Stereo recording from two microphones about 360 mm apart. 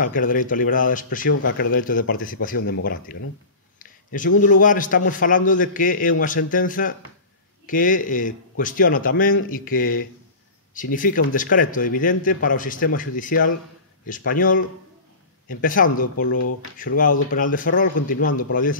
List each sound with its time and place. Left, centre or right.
0.0 s a man's voice: left
3.8 s a sound: left
4.4 s a man's voice: left